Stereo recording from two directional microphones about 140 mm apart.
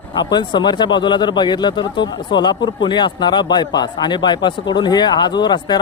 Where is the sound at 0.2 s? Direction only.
30° left (ahead or behind).